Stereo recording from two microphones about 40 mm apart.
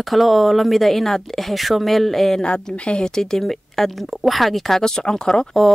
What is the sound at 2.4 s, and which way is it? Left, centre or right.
Speech, left.